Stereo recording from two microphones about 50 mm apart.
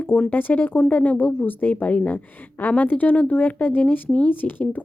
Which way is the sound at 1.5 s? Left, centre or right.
Left.